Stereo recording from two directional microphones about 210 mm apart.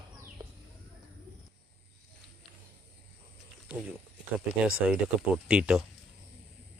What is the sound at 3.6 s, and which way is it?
Speech, 5° right (ahead or behind).